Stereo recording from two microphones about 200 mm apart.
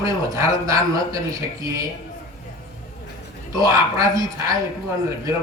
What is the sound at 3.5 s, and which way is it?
A man's voice, 15° right (ahead or behind).